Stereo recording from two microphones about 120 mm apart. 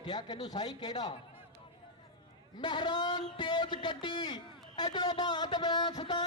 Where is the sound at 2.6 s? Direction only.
40° left (ahead or behind).